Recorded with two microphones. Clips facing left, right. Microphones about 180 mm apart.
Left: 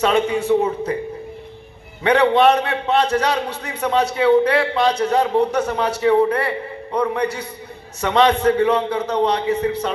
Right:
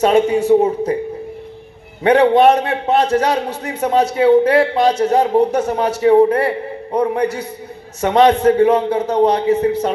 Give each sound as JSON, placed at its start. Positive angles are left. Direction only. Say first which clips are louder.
{"t": 0.0, "sound": "a man's voice", "louder": "right 5 dB", "side_deg": -45}
{"t": 2.0, "sound": "a man's voice", "louder": "right 4 dB", "side_deg": -45}